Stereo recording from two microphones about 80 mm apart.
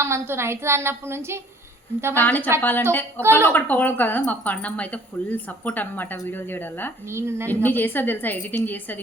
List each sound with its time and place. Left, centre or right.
0.0 s a woman's voice: right
2.1 s speech: left
7.1 s a woman's voice: right
7.6 s speech: left